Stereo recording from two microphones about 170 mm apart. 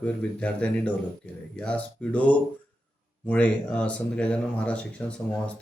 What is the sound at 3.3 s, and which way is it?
Speech, 5° left (ahead or behind).